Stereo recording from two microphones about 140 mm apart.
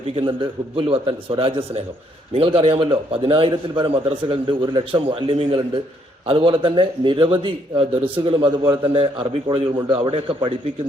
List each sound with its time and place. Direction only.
0.1 s a man's voice: 45° right (ahead or behind)